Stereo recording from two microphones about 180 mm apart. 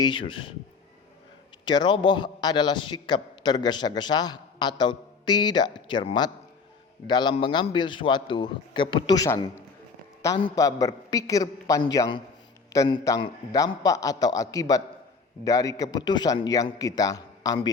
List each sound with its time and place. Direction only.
0.0 s a man's voice: 30° left (ahead or behind)
1.6 s a man's voice: 25° left (ahead or behind)